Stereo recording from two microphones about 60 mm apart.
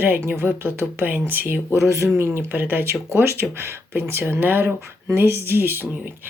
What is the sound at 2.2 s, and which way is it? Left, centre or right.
Speech, right.